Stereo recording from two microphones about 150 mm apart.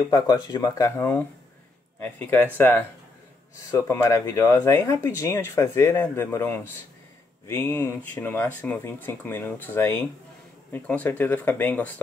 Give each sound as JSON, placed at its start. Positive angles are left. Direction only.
{"t": 0.0, "sound": "speech", "side_deg": 25}